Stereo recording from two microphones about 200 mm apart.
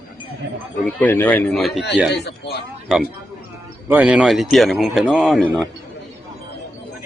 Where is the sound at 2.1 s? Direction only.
55° left (ahead or behind).